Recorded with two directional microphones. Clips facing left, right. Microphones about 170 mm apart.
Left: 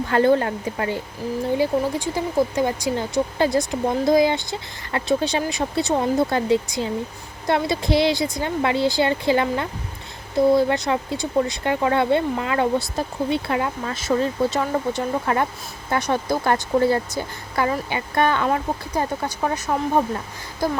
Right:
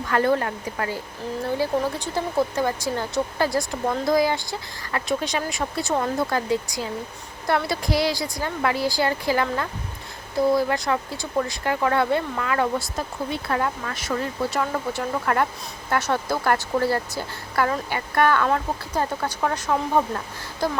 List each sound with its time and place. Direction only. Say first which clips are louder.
0.1 s a woman's voice: left 3 dB; 25° left (ahead or behind); by 19.7 s 10° left (ahead or behind)